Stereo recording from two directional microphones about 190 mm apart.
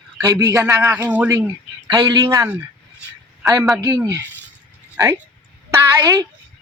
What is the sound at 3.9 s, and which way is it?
A man's voice, 15° right (ahead or behind).